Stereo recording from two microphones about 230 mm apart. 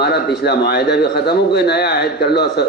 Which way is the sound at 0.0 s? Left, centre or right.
Left.